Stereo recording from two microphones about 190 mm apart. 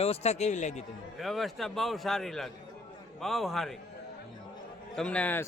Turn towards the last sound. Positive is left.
turn(degrees=10)  # may be behind; listen again after turning